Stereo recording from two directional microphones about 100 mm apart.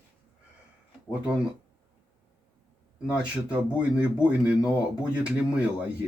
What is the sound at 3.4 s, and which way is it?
Speech, 15° right (ahead or behind).